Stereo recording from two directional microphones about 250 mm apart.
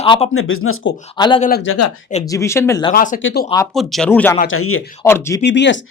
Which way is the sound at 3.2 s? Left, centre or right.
Left.